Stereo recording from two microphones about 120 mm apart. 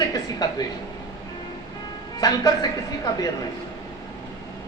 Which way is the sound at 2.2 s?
35° left (ahead or behind).